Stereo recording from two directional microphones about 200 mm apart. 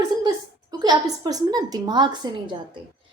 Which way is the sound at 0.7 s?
20° right (ahead or behind).